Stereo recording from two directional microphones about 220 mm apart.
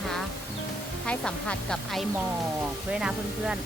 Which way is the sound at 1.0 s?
5° left (ahead or behind).